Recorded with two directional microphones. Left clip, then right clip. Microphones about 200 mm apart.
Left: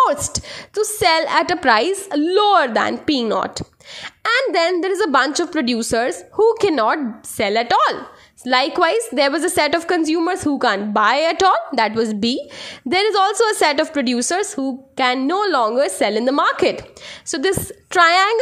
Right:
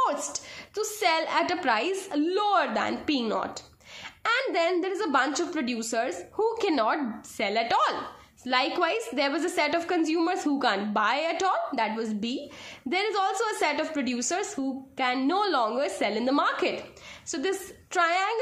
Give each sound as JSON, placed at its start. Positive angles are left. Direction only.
{"t": 0.0, "sound": "a woman's voice", "side_deg": 40}